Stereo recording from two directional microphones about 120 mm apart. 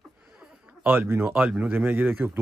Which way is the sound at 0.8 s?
15° right (ahead or behind).